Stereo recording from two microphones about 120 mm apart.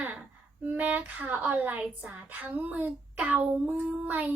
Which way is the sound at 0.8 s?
15° right (ahead or behind).